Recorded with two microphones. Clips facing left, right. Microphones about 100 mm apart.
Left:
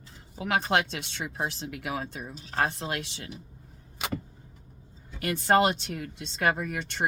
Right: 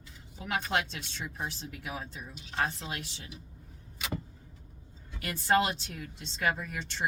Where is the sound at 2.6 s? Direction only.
65° left (ahead or behind); by 3.3 s 80° left.